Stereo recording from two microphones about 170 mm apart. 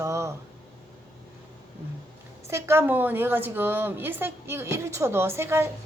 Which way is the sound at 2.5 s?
15° right (ahead or behind).